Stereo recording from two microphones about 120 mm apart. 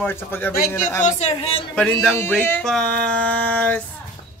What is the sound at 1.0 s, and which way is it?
Speech, 70° left (ahead or behind).